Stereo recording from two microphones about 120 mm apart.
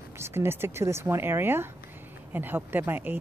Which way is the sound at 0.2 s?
20° right (ahead or behind).